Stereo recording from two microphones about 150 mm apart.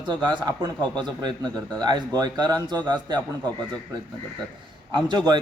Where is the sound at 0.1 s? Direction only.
30° right (ahead or behind).